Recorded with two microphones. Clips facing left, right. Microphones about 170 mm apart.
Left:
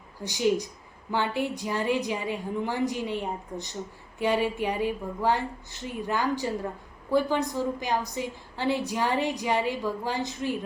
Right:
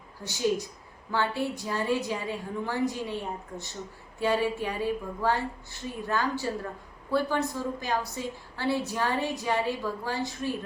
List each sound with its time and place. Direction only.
0.3 s a woman's voice: 15° left (ahead or behind)